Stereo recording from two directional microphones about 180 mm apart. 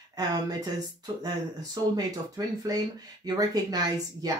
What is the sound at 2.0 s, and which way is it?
Speech, 20° right (ahead or behind).